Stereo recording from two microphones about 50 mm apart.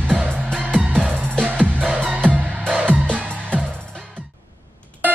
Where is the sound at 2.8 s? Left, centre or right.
Right.